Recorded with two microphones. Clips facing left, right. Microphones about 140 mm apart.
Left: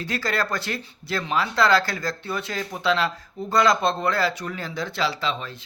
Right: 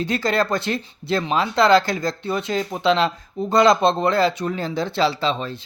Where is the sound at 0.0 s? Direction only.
20° right (ahead or behind).